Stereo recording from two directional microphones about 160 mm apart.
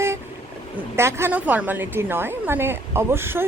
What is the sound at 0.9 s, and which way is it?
A woman's voice, 15° right (ahead or behind).